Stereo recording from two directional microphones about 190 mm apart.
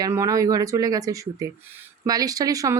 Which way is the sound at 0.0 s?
15° right (ahead or behind).